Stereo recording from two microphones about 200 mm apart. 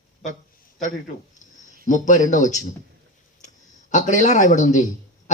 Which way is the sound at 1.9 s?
40° left (ahead or behind).